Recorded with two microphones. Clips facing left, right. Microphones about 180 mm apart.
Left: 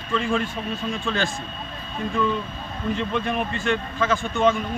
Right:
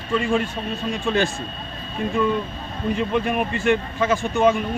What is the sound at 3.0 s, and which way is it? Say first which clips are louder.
A man's voice: right 4 dB; 10° right (ahead or behind).